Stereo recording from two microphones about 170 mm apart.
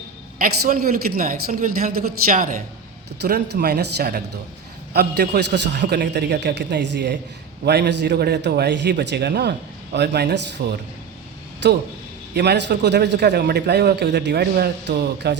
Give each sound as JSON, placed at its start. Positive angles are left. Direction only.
{"t": 0.3, "sound": "a man's voice", "side_deg": -60}
{"t": 3.2, "sound": "a man's voice", "side_deg": -75}
{"t": 7.6, "sound": "a man's voice", "side_deg": -75}
{"t": 11.6, "sound": "speech", "side_deg": -90}
{"t": 12.3, "sound": "a man's voice", "side_deg": -75}